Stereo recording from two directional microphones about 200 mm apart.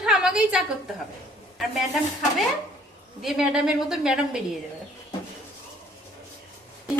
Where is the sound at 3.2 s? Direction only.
Centre (ahead or behind).